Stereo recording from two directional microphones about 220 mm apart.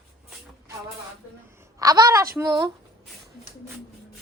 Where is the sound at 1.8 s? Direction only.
15° right (ahead or behind).